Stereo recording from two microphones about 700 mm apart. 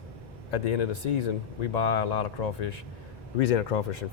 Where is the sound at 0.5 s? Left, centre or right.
Left.